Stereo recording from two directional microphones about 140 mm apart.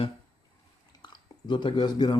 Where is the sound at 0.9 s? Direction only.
35° left (ahead or behind).